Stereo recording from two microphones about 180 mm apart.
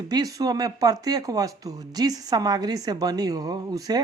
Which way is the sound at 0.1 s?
20° right (ahead or behind).